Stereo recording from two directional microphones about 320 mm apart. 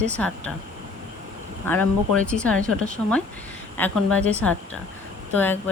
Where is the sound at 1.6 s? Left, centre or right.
Centre.